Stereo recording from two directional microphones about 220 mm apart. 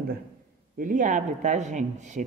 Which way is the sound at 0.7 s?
35° right (ahead or behind).